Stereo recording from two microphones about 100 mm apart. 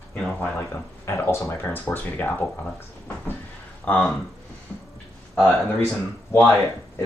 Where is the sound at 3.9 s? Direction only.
5° left (ahead or behind).